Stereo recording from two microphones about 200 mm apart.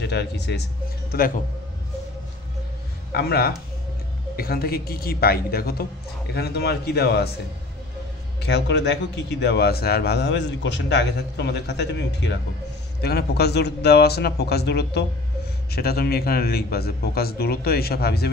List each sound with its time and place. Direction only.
0.0 s speech: 60° left (ahead or behind)
3.1 s a man's voice: 50° left (ahead or behind)
8.4 s a man's voice: 60° left (ahead or behind)